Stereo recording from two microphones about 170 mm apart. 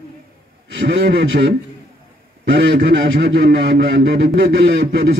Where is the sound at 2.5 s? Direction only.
90° right.